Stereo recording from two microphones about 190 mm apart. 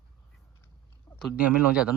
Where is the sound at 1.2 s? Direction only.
5° right (ahead or behind).